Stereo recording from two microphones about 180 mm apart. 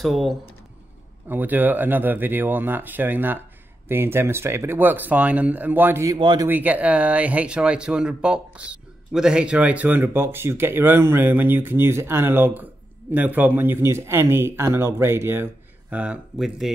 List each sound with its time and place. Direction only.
0.0 s speech: centre (ahead or behind)
6.1 s speech: 25° right (ahead or behind)
6.5 s speech: 10° right (ahead or behind)